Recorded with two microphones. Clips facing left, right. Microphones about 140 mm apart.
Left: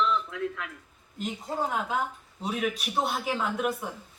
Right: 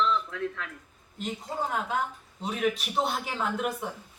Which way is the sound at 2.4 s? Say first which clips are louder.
Right 1 dB; centre (ahead or behind).